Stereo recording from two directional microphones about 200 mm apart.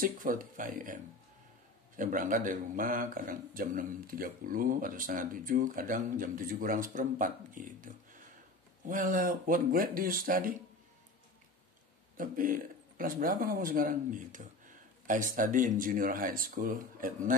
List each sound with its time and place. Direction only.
0.0 s speech: 40° right (ahead or behind)
12.2 s speech: 45° right (ahead or behind)